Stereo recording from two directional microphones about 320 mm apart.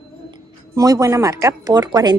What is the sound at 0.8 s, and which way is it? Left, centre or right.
A woman's voice, centre.